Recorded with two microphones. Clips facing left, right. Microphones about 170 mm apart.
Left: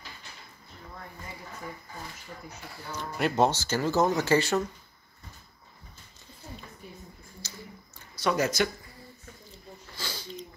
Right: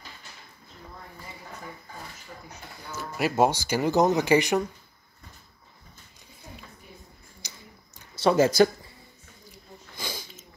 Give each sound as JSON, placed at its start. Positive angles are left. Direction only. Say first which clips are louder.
{"t": 2.9, "sound": "speech", "louder": "right 1 dB", "side_deg": -5}
{"t": 7.4, "sound": "a sound", "louder": "left 2 dB", "side_deg": -15}
{"t": 8.2, "sound": "speech", "louder": "right 7 dB", "side_deg": -30}
{"t": 9.9, "sound": "sniff", "louder": "right 1 dB", "side_deg": -10}